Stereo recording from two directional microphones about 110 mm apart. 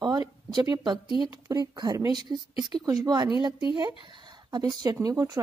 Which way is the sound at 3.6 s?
50° left (ahead or behind).